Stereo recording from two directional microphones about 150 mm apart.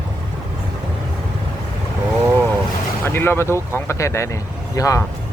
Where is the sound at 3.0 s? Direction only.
15° left (ahead or behind).